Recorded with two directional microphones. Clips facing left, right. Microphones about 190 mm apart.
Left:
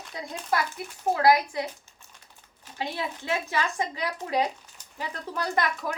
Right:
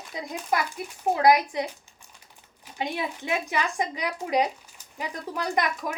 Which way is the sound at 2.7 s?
15° right (ahead or behind).